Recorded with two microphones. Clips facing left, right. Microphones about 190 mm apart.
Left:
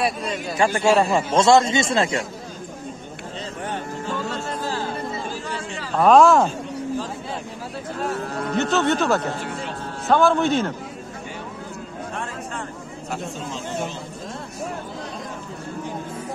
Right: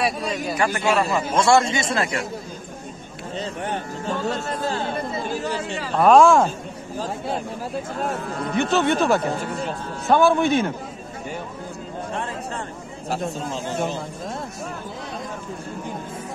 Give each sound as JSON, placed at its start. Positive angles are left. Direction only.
{"t": 0.8, "sound": "a man's voice", "side_deg": 30}
{"t": 5.9, "sound": "speech", "side_deg": 0}
{"t": 8.5, "sound": "a man's voice", "side_deg": -15}